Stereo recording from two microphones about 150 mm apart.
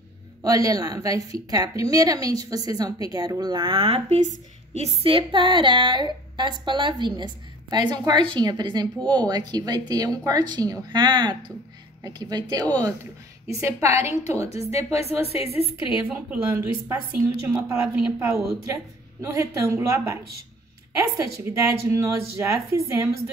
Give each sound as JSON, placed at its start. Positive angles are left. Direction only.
{"t": 0.4, "sound": "a woman's voice", "side_deg": -25}
{"t": 14.9, "sound": "a woman's voice", "side_deg": 45}
{"t": 16.1, "sound": "a woman's voice", "side_deg": -10}